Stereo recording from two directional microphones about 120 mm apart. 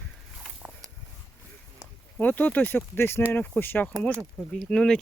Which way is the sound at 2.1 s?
15° left (ahead or behind).